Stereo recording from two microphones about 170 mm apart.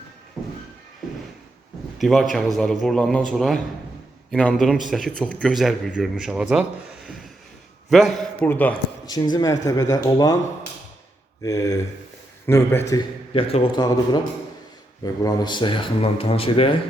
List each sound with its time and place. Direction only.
2.0 s a man's voice: centre (ahead or behind)
9.0 s speech: 25° left (ahead or behind)
11.4 s speech: 20° left (ahead or behind)
13.3 s speech: 35° left (ahead or behind)
15.0 s speech: 20° left (ahead or behind)